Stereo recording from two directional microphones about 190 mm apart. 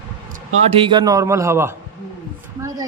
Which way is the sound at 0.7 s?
25° right (ahead or behind).